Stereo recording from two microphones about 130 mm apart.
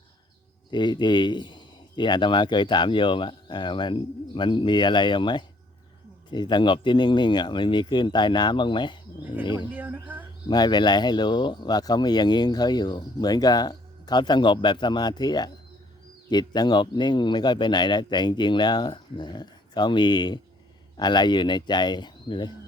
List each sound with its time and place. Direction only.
0.7 s speech: 35° left (ahead or behind)
9.7 s speech: 15° right (ahead or behind)
10.5 s speech: 35° left (ahead or behind)